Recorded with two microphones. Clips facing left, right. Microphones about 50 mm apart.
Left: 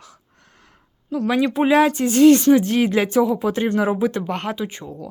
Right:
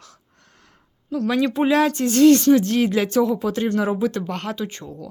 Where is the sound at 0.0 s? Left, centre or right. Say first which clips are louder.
Left 2 dB; centre.